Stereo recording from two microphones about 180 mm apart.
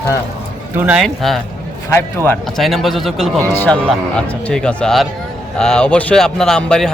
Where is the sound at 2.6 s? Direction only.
Centre (ahead or behind).